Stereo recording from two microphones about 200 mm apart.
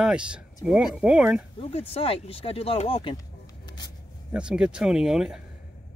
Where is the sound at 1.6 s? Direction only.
30° left (ahead or behind).